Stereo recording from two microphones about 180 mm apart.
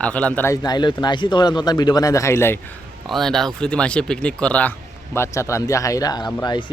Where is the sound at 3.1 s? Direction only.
Centre (ahead or behind).